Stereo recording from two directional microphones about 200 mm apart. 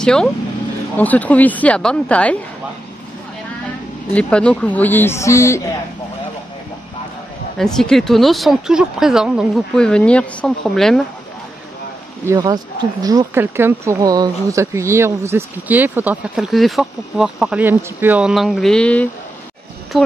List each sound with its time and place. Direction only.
0.0 s speech: 5° left (ahead or behind)
4.1 s speech: 5° left (ahead or behind)
7.5 s speech: centre (ahead or behind)
12.3 s speech: 20° right (ahead or behind); by 19.0 s 5° left (ahead or behind)